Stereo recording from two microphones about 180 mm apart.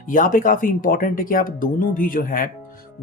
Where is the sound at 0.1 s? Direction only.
50° left (ahead or behind).